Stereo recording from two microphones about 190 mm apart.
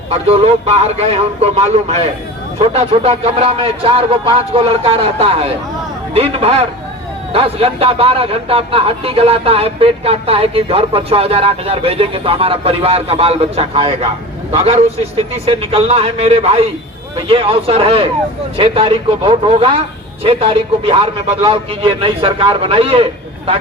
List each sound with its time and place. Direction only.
0.1 s a man's voice: 30° right (ahead or behind)